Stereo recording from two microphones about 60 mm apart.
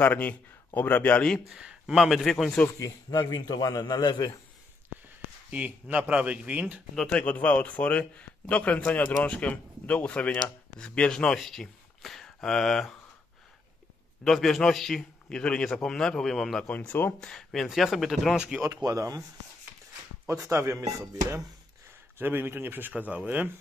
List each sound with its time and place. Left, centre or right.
0.0 s a man's voice: left
1.5 s a sound: centre
2.0 s speech: centre
2.8 s a man's voice: left
5.5 s speech: right
7.1 s a man's voice: left
10.8 s speech: centre
14.2 s a man's voice: centre
16.6 s a man's voice: left
17.2 s a man's voice: centre
18.3 s speech: centre
18.7 s speech: right
20.5 s speech: right
22.2 s speech: right